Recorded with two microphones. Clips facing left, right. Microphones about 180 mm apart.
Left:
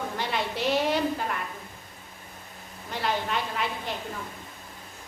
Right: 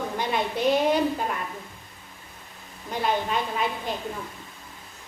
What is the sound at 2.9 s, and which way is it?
Speech, 20° right (ahead or behind).